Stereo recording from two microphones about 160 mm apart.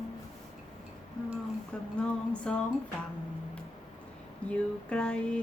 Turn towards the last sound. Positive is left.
turn(degrees=5)  # may be behind; listen again after turning